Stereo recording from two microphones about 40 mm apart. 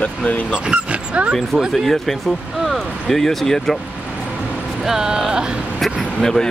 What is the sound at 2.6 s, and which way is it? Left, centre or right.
Speech, centre.